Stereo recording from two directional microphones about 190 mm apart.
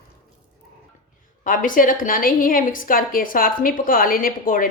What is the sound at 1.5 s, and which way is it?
A woman's voice, 45° left (ahead or behind).